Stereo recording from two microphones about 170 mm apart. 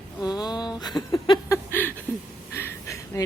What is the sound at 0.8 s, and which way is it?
Speech, 25° left (ahead or behind).